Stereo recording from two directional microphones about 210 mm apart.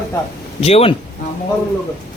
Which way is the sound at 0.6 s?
30° left (ahead or behind).